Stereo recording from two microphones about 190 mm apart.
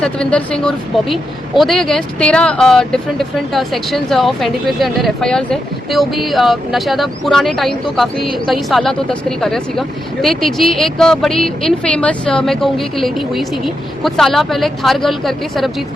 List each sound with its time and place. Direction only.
0.0 s speech: 5° left (ahead or behind)